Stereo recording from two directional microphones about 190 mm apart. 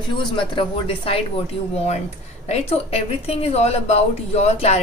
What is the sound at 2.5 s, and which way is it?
A woman's voice, 30° left (ahead or behind).